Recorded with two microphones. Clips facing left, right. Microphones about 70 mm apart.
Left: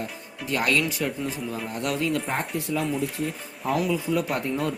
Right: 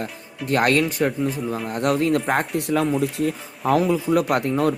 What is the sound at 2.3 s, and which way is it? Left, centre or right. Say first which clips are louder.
Speech: right 6 dB; right.